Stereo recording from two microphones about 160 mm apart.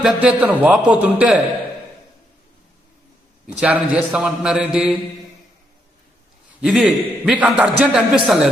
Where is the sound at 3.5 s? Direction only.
5° right (ahead or behind).